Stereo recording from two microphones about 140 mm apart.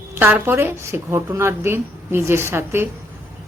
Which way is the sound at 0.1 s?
15° right (ahead or behind).